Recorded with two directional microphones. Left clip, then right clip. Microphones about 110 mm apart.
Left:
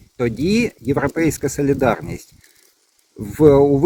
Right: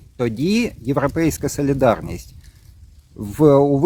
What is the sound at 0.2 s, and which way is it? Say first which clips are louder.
Speech: left 2 dB; 25° right (ahead or behind).